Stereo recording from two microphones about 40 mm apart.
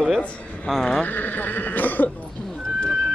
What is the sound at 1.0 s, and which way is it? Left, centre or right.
Speech, left.